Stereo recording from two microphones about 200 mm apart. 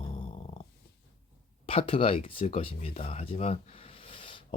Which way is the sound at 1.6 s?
30° left (ahead or behind).